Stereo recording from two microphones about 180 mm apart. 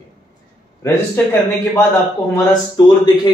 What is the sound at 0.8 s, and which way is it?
Speech, 15° left (ahead or behind).